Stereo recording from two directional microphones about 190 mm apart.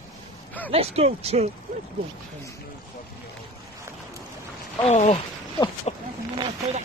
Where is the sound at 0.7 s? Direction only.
30° right (ahead or behind).